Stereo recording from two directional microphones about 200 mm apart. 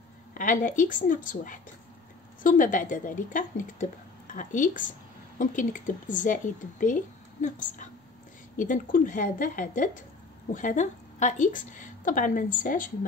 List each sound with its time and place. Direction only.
0.3 s a woman's voice: 40° left (ahead or behind)